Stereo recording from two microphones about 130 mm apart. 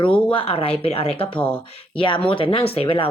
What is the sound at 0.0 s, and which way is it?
Speech, 40° left (ahead or behind).